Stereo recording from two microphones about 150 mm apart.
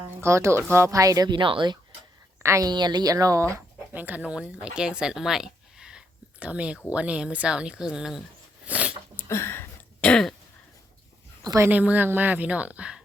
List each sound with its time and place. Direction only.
0.0 s speech: 20° right (ahead or behind)
2.4 s speech: 20° right (ahead or behind); by 8.2 s 5° right (ahead or behind)
8.6 s a sound: 10° right (ahead or behind)
9.1 s throat clearing: 15° left (ahead or behind)
11.4 s speech: 20° right (ahead or behind)
11.7 s speech: 10° right (ahead or behind)